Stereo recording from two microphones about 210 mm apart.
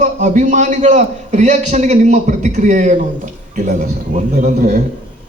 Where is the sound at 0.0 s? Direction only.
35° right (ahead or behind).